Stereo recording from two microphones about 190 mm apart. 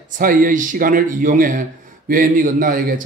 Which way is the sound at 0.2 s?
45° right (ahead or behind).